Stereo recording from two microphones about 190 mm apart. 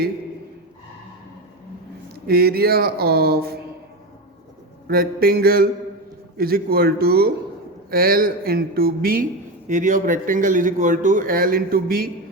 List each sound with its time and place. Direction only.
2.1 s speech: 55° right (ahead or behind)
4.9 s a man's voice: 50° right (ahead or behind)
9.6 s a man's voice: 40° right (ahead or behind)